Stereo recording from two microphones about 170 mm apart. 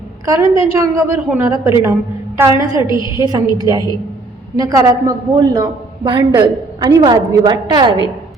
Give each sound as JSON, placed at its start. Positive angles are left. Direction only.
{"t": 0.3, "sound": "a woman's voice", "side_deg": -20}